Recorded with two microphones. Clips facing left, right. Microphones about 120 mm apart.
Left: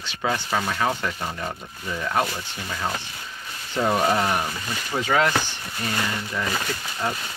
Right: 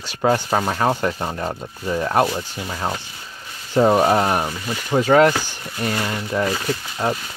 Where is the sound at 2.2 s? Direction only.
20° right (ahead or behind).